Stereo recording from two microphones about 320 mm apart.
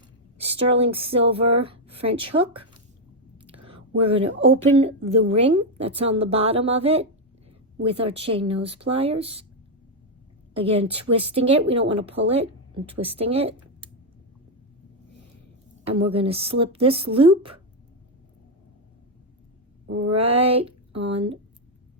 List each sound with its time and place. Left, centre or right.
0.3 s a woman's voice: centre
4.1 s a woman's voice: centre
10.5 s a woman's voice: centre
16.0 s a woman's voice: centre
20.1 s a woman's voice: centre